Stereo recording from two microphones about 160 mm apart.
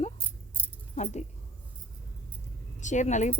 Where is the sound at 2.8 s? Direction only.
50° left (ahead or behind).